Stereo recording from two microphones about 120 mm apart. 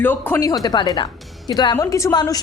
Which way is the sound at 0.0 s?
15° left (ahead or behind).